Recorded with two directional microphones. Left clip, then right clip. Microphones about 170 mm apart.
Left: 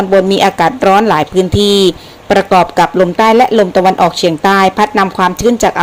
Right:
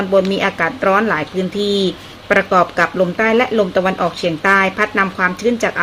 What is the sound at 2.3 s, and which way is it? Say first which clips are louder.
Speech: left 5 dB; 30° left (ahead or behind).